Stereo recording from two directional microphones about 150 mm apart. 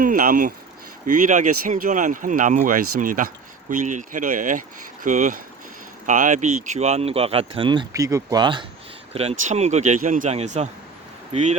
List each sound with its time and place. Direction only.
0.0 s speech: 65° right (ahead or behind)
1.0 s speech: 60° right (ahead or behind); by 8.6 s 30° right (ahead or behind)
9.1 s speech: 45° right (ahead or behind)